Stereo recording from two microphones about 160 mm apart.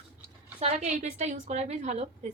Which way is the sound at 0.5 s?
45° right (ahead or behind).